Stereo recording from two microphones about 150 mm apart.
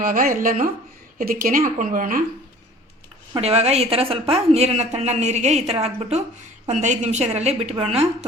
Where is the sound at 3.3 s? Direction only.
45° right (ahead or behind).